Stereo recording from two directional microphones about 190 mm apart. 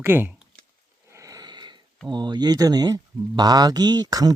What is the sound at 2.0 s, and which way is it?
Speech, 25° right (ahead or behind).